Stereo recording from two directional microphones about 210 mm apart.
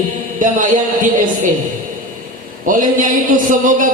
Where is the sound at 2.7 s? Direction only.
40° right (ahead or behind).